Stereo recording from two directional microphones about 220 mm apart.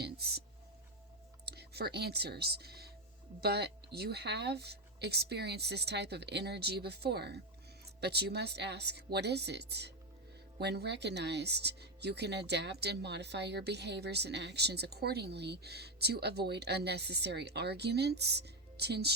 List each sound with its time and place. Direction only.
0.0 s music: 45° right (ahead or behind)
1.5 s speech: 45° right (ahead or behind)